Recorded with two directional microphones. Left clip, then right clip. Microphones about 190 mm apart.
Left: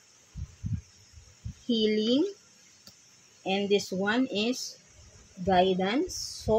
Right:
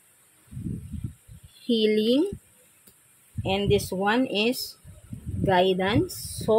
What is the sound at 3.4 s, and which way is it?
Speech, 50° right (ahead or behind).